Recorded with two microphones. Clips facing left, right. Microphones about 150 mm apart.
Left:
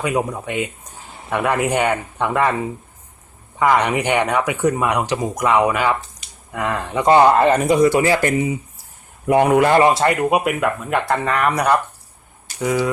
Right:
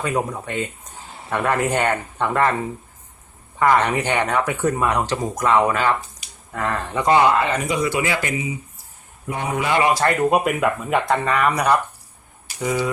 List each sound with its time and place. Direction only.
0.0 s speech: 15° left (ahead or behind)
7.1 s speech: 40° left (ahead or behind)
9.2 s a man's voice: 70° left (ahead or behind)
9.8 s speech: 25° left (ahead or behind)
10.2 s speech: 5° left (ahead or behind)